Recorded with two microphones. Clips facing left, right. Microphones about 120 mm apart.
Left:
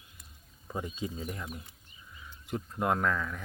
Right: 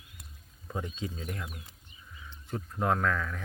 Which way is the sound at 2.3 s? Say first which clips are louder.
Left 1 dB; 10° left (ahead or behind).